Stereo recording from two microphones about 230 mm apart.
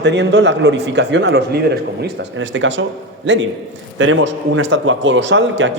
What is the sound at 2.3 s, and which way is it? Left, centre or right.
A man's voice, right.